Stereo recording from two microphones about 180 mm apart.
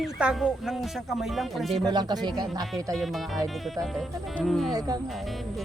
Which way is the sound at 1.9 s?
25° right (ahead or behind).